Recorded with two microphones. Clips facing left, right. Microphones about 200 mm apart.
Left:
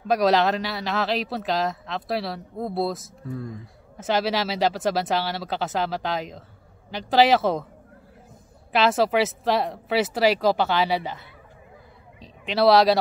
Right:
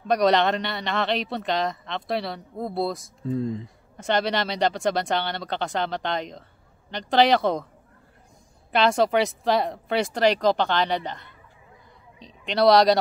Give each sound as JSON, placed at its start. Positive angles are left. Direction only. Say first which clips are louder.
{"t": 0.1, "sound": "a man's voice", "louder": "even", "side_deg": 0}
{"t": 3.3, "sound": "speech", "louder": "right 7 dB", "side_deg": -20}
{"t": 3.9, "sound": "a man's voice", "louder": "even", "side_deg": 5}
{"t": 8.7, "sound": "a man's voice", "louder": "even", "side_deg": 5}